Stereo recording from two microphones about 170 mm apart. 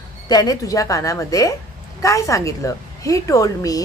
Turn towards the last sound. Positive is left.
turn(degrees=20)  # may be behind; listen again after turning